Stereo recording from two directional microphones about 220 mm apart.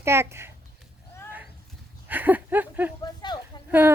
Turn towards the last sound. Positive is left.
turn(degrees=-10)  # may be behind; listen again after turning